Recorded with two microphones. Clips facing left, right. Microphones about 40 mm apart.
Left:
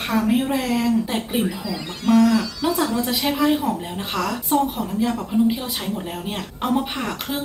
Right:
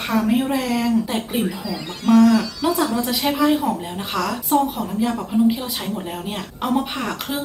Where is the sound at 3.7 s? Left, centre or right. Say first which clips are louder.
Right 1 dB; right.